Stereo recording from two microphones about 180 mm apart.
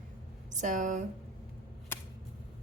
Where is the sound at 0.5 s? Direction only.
45° right (ahead or behind).